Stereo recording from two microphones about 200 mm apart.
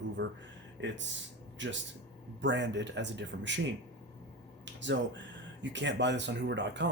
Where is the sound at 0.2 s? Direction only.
55° right (ahead or behind).